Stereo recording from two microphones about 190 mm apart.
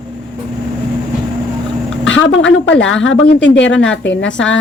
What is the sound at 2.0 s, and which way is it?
A woman's voice, 85° left.